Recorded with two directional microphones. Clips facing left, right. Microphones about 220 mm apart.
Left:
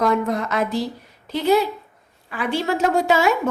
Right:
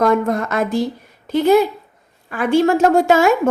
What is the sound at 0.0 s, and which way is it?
A woman's voice, 50° right (ahead or behind).